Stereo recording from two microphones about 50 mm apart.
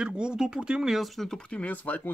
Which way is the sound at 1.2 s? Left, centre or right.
Centre.